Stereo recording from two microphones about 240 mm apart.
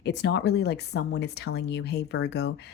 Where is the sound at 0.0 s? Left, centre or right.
Left.